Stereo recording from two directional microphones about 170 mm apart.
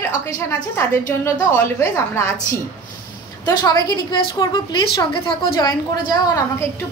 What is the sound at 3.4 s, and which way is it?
A woman's voice, 25° left (ahead or behind).